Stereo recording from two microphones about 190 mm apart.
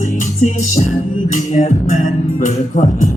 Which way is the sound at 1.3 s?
40° left (ahead or behind).